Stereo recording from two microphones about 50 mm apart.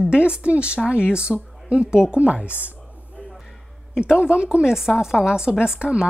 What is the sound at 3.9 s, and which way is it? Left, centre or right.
Speech, centre.